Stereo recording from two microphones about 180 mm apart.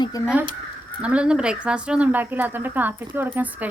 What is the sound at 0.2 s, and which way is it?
Speech, 20° left (ahead or behind).